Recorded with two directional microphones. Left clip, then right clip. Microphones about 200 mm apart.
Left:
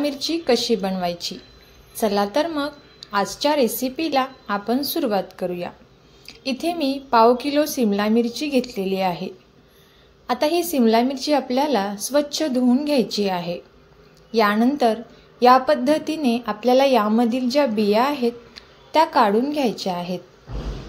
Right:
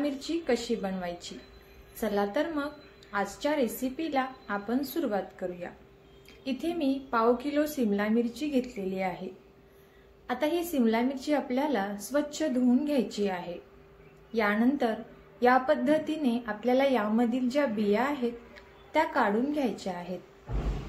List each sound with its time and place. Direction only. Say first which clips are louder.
0.0 s a woman's voice: left 9 dB; 35° left (ahead or behind)